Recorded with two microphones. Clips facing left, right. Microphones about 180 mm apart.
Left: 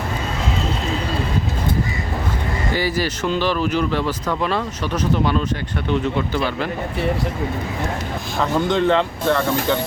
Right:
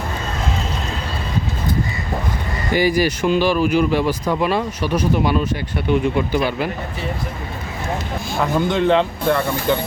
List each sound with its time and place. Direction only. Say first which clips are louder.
2.7 s speech: right 7 dB; 15° right (ahead or behind)
8.7 s speech: right 1 dB; 15° right (ahead or behind)